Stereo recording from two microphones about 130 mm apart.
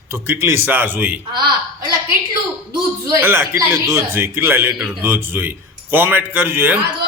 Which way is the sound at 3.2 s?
20° right (ahead or behind).